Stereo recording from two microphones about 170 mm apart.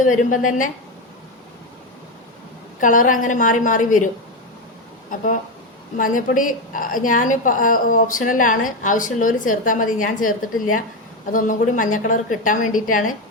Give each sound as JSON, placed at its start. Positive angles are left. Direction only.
{"t": 0.0, "sound": "a woman's voice", "side_deg": 50}
{"t": 2.8, "sound": "a woman's voice", "side_deg": 50}
{"t": 6.0, "sound": "a woman's voice", "side_deg": 50}